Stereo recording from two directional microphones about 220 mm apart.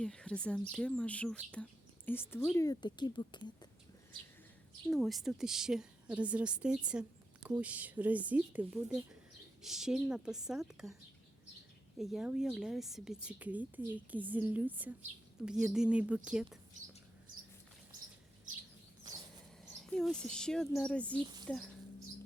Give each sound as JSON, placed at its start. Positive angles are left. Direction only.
{"t": 0.0, "sound": "a woman's voice", "side_deg": 5}
{"t": 4.9, "sound": "a woman's voice", "side_deg": 0}
{"t": 11.9, "sound": "a woman's voice", "side_deg": 0}
{"t": 19.6, "sound": "speech", "side_deg": 5}